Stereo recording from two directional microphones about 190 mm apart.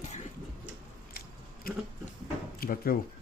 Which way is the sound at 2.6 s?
50° left (ahead or behind).